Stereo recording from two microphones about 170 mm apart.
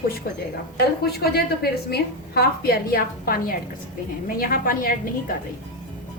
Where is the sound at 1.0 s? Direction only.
65° left (ahead or behind).